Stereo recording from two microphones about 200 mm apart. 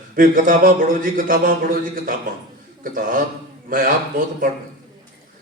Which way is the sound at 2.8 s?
40° right (ahead or behind).